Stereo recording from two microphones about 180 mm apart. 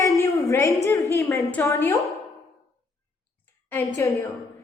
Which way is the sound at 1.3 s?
10° left (ahead or behind).